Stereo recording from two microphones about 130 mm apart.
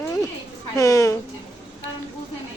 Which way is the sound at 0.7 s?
25° left (ahead or behind).